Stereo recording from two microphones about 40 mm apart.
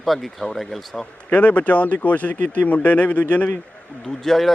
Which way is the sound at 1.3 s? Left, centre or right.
Left.